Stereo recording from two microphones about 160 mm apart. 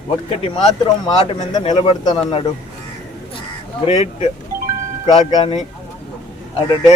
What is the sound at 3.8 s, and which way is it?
Speech, 45° left (ahead or behind).